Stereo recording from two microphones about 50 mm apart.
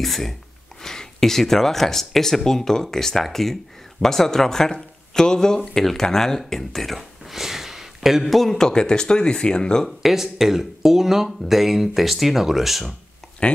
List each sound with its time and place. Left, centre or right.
0.0 s speech: centre
9.8 s speech: centre
13.4 s speech: left